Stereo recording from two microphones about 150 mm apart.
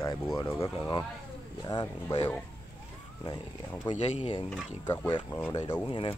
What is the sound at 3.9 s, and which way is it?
Speech, 45° left (ahead or behind).